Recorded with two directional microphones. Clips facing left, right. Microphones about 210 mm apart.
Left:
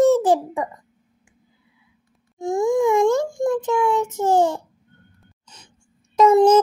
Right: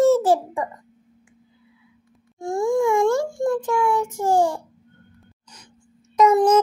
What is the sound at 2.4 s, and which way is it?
Child singing, 20° left (ahead or behind).